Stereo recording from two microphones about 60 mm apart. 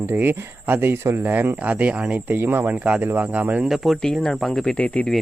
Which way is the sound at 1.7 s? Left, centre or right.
Right.